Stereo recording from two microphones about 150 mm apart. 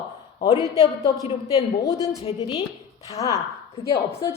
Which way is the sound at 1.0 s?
40° left (ahead or behind).